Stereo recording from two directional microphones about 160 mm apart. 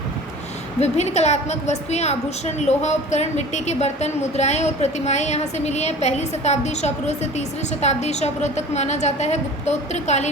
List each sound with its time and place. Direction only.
0.8 s a woman's voice: 45° left (ahead or behind)